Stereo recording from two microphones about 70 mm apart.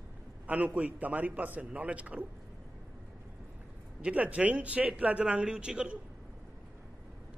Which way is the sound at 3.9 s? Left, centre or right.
Centre.